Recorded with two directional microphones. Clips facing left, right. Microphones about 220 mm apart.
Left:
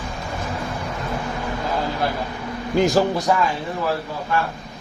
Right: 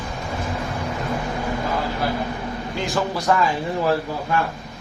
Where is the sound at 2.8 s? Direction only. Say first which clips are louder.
Left 8 dB; 40° left (ahead or behind).